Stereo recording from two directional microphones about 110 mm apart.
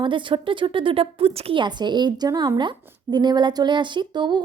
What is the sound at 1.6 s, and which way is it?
A woman's voice, 40° right (ahead or behind).